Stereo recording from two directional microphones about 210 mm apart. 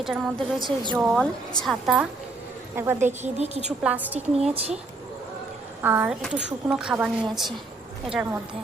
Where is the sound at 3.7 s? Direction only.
5° right (ahead or behind).